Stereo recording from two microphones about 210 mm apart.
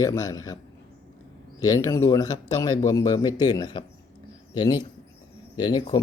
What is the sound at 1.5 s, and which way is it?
Speech, 15° left (ahead or behind).